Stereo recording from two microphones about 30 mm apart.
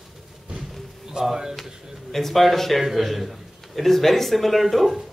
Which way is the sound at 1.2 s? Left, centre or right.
Right.